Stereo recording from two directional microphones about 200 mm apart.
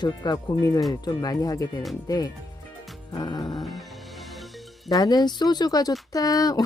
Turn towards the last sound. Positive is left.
turn(degrees=20)  # may be behind; listen again after turning